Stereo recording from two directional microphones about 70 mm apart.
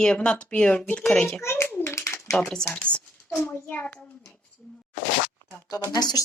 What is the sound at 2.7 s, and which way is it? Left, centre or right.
A child's voice, centre.